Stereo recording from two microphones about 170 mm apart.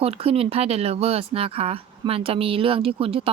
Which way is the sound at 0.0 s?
35° right (ahead or behind).